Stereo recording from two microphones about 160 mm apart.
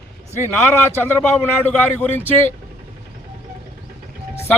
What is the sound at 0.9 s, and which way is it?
Speech, 10° left (ahead or behind).